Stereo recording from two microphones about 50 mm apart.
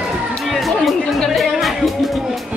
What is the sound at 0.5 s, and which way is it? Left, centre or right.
Music, centre.